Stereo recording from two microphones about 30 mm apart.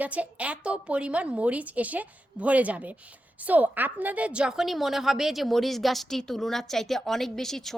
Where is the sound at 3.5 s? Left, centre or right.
Right.